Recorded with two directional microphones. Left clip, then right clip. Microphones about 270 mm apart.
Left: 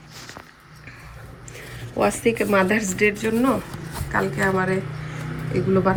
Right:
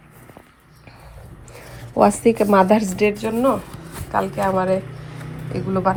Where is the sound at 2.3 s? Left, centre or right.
Centre.